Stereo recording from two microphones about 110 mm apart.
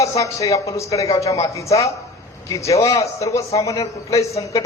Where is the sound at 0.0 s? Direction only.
30° left (ahead or behind).